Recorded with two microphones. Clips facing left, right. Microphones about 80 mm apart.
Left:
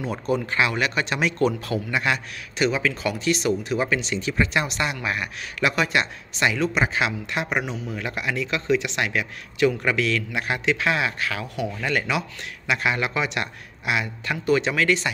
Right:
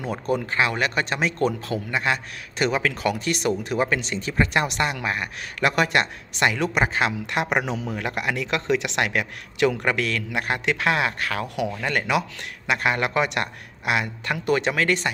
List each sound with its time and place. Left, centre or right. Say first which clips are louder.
0.3 s speech: even; right
2.6 s speech: even; right
5.0 s speech: even; right
7.2 s speech: right 2 dB; right
7.6 s speech: right 3 dB; right
8.0 s speech: left 2 dB; right
9.8 s speech: left 1 dB; right